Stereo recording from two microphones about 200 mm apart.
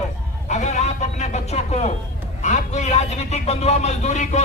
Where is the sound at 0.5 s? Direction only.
35° left (ahead or behind).